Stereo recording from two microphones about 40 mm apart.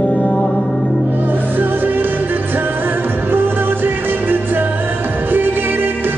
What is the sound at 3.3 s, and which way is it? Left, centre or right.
Music, right.